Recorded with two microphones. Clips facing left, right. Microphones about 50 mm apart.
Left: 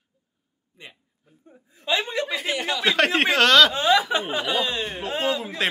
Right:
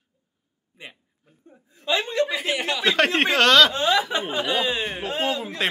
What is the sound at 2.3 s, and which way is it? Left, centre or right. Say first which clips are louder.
Speech: right 1 dB; centre.